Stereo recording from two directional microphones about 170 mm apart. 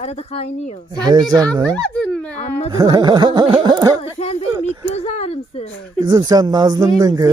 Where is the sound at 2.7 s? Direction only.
25° right (ahead or behind).